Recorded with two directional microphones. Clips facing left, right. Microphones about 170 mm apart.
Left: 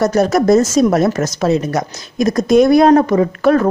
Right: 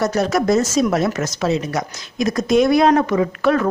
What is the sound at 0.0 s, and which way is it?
A woman's voice, 45° left (ahead or behind).